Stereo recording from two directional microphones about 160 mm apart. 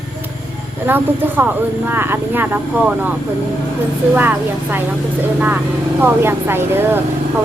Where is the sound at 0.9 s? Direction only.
10° right (ahead or behind).